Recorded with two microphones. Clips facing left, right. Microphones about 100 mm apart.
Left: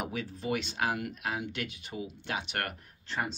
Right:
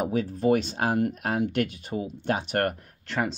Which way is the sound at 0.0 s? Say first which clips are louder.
Right 11 dB; 40° right (ahead or behind).